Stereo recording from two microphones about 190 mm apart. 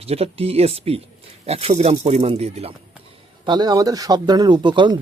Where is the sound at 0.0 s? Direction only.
30° right (ahead or behind).